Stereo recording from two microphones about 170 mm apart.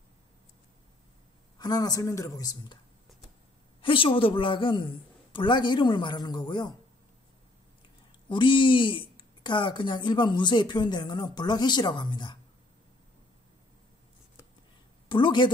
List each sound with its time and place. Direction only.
1.6 s speech: 20° left (ahead or behind)
3.8 s speech: 30° left (ahead or behind)
8.3 s speech: 30° left (ahead or behind)
15.0 s a woman's voice: 30° left (ahead or behind)